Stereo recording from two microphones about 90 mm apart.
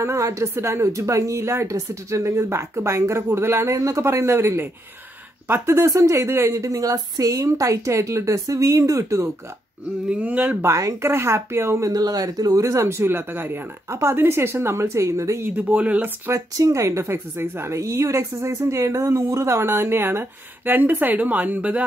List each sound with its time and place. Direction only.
0.0 s a woman's voice: 35° right (ahead or behind)
10.0 s speech: 15° right (ahead or behind)
10.6 s a woman's voice: 35° right (ahead or behind)
11.9 s speech: 45° right (ahead or behind)
12.6 s speech: 30° right (ahead or behind)
15.5 s speech: 15° right (ahead or behind)
16.3 s a woman's voice: 40° right (ahead or behind); by 21.8 s 15° right (ahead or behind)